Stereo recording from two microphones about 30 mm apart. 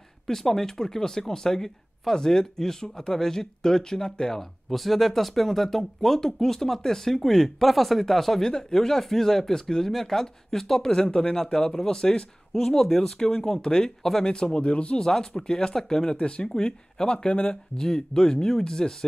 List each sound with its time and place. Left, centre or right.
0.3 s speech: centre
4.4 s speech: centre
8.4 s speech: left
14.6 s speech: left
15.0 s speech: centre
16.2 s speech: left
16.4 s speech: left
17.3 s speech: left
17.7 s speech: left